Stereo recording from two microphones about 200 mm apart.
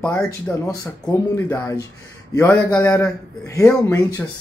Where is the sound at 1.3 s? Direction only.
10° left (ahead or behind).